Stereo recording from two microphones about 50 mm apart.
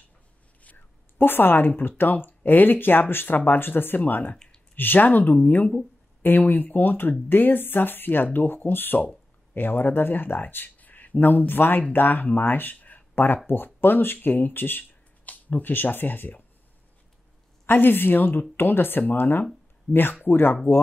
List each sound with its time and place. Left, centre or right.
1.1 s speech: left
17.6 s speech: left